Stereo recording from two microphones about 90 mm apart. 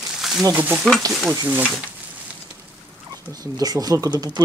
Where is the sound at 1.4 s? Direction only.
20° right (ahead or behind).